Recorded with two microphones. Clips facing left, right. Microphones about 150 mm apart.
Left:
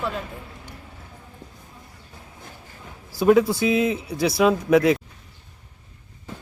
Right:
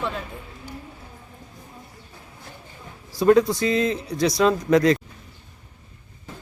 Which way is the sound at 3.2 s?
5° left (ahead or behind).